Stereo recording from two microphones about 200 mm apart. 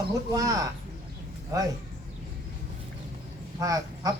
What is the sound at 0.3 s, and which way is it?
Speech, 15° right (ahead or behind).